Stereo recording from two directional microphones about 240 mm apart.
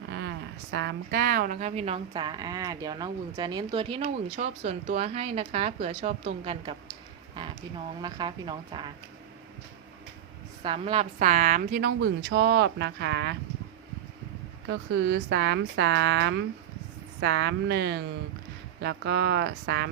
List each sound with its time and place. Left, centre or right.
0.2 s a woman's voice: right
7.4 s a sound: centre
8.0 s speech: centre
10.6 s a woman's voice: right
14.7 s a woman's voice: right